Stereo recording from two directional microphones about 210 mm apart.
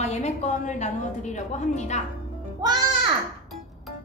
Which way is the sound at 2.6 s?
20° right (ahead or behind).